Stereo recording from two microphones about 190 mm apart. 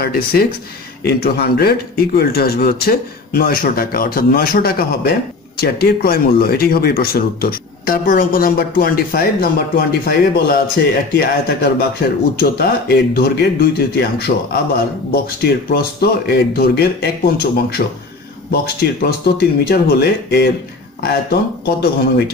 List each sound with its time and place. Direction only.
0.0 s speech: 55° left (ahead or behind)
12.4 s speech: 55° left (ahead or behind)